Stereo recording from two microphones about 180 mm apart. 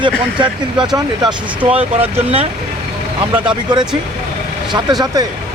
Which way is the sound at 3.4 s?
25° right (ahead or behind).